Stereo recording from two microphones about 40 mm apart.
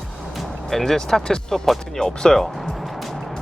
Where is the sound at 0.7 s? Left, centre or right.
Centre.